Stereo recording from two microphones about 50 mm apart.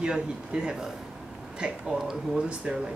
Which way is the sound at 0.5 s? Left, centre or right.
Centre.